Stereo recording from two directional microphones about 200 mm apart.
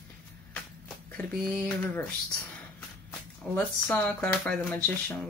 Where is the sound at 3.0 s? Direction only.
5° left (ahead or behind).